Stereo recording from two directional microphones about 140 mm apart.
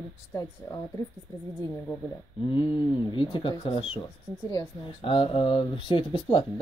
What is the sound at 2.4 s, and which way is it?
Speech, 35° left (ahead or behind).